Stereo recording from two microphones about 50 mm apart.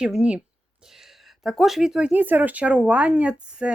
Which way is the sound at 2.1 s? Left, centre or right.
Right.